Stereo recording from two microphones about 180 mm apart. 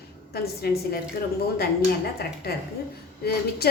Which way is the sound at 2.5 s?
60° left (ahead or behind).